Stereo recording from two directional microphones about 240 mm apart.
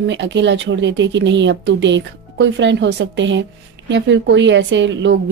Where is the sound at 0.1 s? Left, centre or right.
Right.